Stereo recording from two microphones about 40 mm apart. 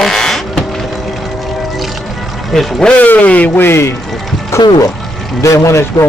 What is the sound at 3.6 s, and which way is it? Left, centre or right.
Speech, left.